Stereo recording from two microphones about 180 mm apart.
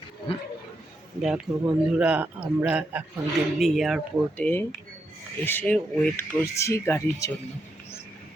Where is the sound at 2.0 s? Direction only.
5° right (ahead or behind).